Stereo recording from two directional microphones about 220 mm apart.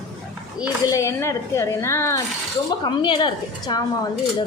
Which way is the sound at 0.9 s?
15° left (ahead or behind).